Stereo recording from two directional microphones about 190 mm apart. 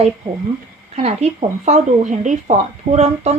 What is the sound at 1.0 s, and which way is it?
A woman's voice, 35° right (ahead or behind).